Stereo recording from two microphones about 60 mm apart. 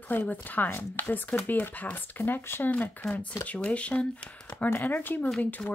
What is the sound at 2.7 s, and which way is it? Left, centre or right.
Speech, left.